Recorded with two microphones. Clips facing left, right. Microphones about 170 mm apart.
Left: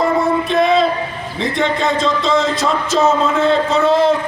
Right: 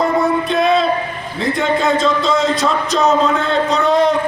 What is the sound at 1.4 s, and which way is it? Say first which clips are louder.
Speech: right 1 dB; centre (ahead or behind).